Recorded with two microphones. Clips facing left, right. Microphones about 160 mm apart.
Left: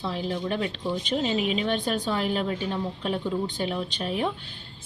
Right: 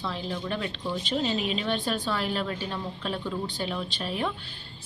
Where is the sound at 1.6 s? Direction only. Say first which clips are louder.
Left 2 dB; 15° left (ahead or behind).